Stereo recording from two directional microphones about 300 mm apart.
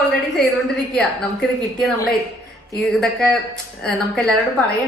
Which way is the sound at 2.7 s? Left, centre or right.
Centre.